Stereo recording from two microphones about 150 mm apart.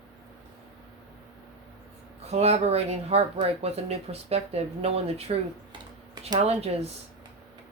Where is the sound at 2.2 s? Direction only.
45° right (ahead or behind).